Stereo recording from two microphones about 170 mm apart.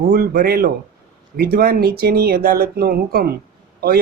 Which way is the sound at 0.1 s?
65° right (ahead or behind).